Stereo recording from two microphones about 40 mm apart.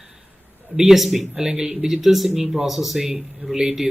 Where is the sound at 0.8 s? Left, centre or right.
Centre.